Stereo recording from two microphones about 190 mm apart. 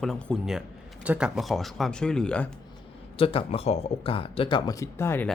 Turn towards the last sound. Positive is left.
turn(degrees=10)  # may be behind; listen again after turning